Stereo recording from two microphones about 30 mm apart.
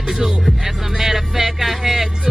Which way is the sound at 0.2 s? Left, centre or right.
Centre.